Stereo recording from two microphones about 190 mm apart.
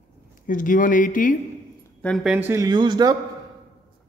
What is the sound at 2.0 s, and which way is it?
Speech, centre (ahead or behind).